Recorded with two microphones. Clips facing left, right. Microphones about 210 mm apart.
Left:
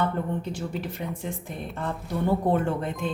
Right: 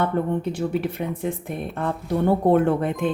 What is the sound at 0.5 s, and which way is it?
A woman's voice, 60° right (ahead or behind).